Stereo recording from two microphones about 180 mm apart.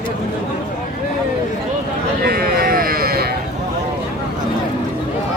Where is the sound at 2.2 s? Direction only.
55° right (ahead or behind).